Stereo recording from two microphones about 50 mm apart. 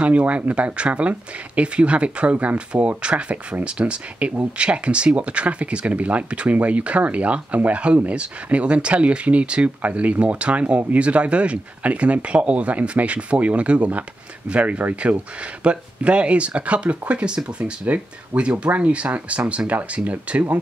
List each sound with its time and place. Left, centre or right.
0.0 s speech: right